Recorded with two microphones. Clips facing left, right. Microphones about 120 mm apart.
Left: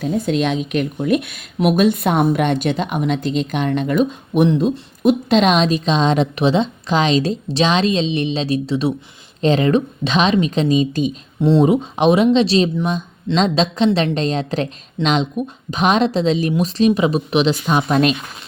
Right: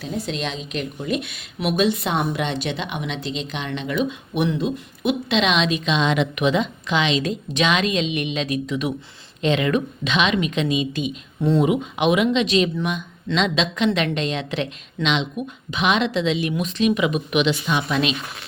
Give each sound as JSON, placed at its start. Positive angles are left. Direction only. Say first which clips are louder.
{"t": 0.0, "sound": "a woman's voice", "louder": "left 8 dB", "side_deg": 50}
{"t": 11.3, "sound": "speech", "louder": "left 5 dB", "side_deg": 25}
{"t": 11.6, "sound": "speech", "louder": "left 5 dB", "side_deg": 35}